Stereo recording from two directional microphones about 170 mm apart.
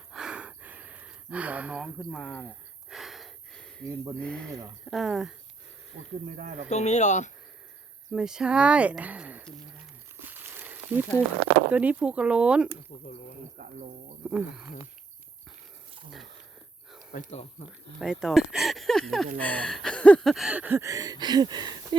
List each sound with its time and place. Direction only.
0.1 s gasp: 5° right (ahead or behind)
2.9 s a sound: centre (ahead or behind)
3.8 s speech: 15° right (ahead or behind)
4.2 s speech: 5° left (ahead or behind)
5.9 s speech: 70° right (ahead or behind)
6.7 s speech: 40° left (ahead or behind)
8.1 s speech: 5° right (ahead or behind)
10.2 s crumpling: 10° right (ahead or behind)
11.7 s speech: 10° right (ahead or behind)
12.9 s speech: 50° left (ahead or behind)
13.6 s speech: 50° right (ahead or behind)
14.3 s speech: 5° right (ahead or behind)
17.1 s speech: 40° left (ahead or behind)
18.0 s speech: 5° right (ahead or behind); by 21.9 s 25° right (ahead or behind)